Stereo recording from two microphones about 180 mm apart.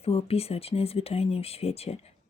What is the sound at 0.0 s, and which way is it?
Speech, 35° left (ahead or behind).